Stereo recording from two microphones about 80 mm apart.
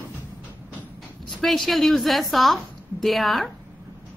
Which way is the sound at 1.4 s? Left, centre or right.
Centre.